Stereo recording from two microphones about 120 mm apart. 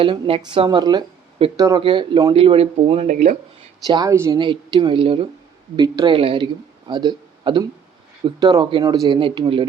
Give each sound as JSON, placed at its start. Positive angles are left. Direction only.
{"t": 0.0, "sound": "speech", "side_deg": -45}
{"t": 1.8, "sound": "speech", "side_deg": -40}
{"t": 3.1, "sound": "speech", "side_deg": -90}
{"t": 3.8, "sound": "speech", "side_deg": -35}
{"t": 4.1, "sound": "a woman's voice", "side_deg": -20}
{"t": 4.4, "sound": "speech", "side_deg": -40}